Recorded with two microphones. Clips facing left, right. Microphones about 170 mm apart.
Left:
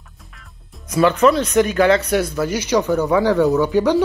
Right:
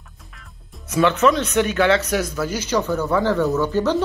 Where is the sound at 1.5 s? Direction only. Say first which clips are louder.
Left 3 dB; 40° left (ahead or behind).